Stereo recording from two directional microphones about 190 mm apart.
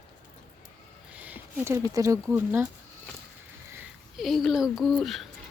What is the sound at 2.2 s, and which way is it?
Speech, 5° right (ahead or behind).